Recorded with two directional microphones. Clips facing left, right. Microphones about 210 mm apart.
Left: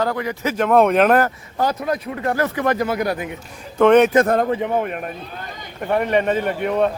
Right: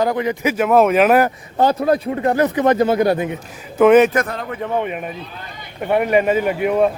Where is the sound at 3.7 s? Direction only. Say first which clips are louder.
Right 1 dB; 5° right (ahead or behind).